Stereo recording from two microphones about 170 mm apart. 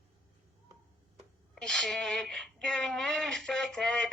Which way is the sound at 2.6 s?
5° left (ahead or behind).